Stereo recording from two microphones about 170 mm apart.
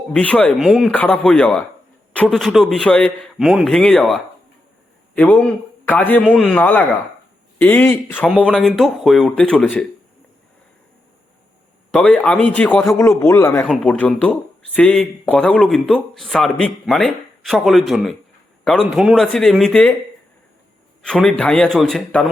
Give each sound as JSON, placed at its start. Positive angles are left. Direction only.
{"t": 0.1, "sound": "a man's voice", "side_deg": 5}
{"t": 11.9, "sound": "a man's voice", "side_deg": 5}
{"t": 21.0, "sound": "speech", "side_deg": 5}